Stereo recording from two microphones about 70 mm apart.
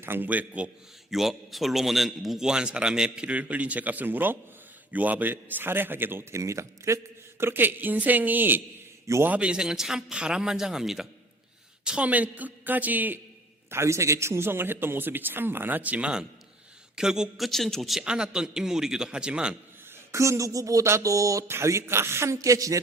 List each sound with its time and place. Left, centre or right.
0.0 s a woman's voice: right
1.1 s a man's voice: centre; by 6.4 s right
6.4 s a woman's voice: right; by 11.1 s centre
11.9 s a woman's voice: centre
13.7 s a man's voice: right; by 19.5 s centre
20.1 s a sound: right